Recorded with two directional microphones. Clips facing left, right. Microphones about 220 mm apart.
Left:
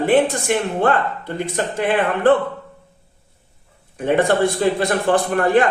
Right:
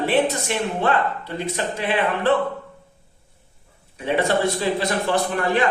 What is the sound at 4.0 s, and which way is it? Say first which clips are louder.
A man's voice: left 4 dB; 50° left (ahead or behind).